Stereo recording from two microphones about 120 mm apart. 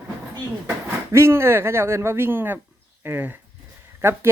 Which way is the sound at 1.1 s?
20° right (ahead or behind).